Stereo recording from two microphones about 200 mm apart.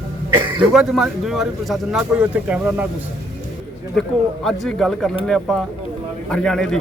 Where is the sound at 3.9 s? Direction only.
Centre (ahead or behind).